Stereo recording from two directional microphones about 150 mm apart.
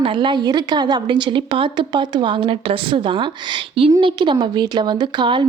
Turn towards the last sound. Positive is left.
turn(degrees=-30)  # may be behind; listen again after turning